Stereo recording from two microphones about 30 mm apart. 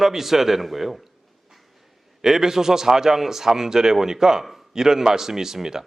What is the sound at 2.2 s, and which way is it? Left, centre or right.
A man's voice, centre.